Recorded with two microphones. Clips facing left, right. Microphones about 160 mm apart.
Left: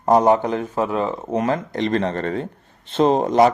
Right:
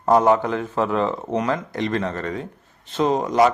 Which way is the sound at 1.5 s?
25° left (ahead or behind).